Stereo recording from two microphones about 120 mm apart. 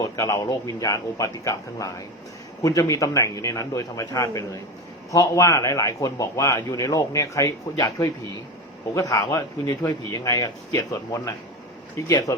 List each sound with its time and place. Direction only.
0.0 s a man's voice: 25° left (ahead or behind)